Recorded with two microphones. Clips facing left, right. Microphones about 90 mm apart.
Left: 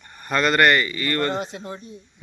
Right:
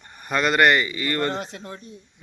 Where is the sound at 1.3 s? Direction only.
5° left (ahead or behind).